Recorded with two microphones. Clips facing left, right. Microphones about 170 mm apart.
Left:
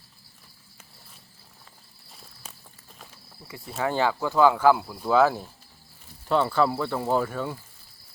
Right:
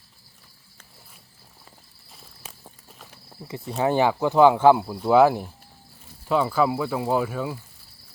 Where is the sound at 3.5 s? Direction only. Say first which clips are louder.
Right 5 dB; 20° right (ahead or behind).